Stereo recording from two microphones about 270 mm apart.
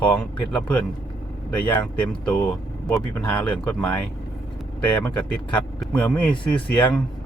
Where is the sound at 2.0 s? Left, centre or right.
Centre.